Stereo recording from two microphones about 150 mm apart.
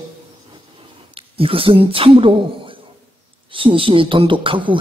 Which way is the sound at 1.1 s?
40° right (ahead or behind).